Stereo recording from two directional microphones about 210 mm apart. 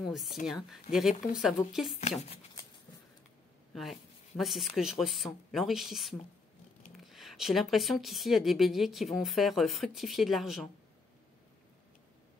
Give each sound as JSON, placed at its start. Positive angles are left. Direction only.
{"t": 0.0, "sound": "a woman's voice", "side_deg": 0}
{"t": 2.0, "sound": "speech", "side_deg": 30}
{"t": 4.4, "sound": "speech", "side_deg": 0}